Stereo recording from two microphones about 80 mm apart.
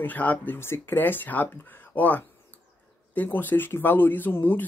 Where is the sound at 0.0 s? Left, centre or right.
Centre.